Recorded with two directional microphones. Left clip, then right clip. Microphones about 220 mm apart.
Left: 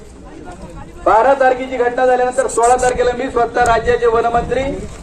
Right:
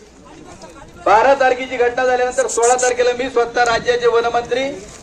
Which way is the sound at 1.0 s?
45° right (ahead or behind).